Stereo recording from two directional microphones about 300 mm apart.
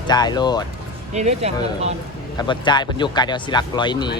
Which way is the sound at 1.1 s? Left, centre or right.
Right.